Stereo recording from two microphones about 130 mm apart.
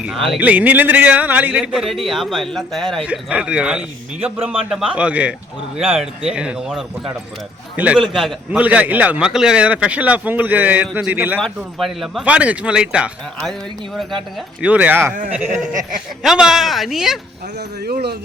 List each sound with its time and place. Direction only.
0.3 s speech: 10° right (ahead or behind)
3.1 s speech: 10° right (ahead or behind)
8.6 s speech: 10° right (ahead or behind)
11.3 s speech: centre (ahead or behind)
14.6 s speech: 10° right (ahead or behind)
15.5 s speech: 80° right
16.2 s speech: 5° right (ahead or behind)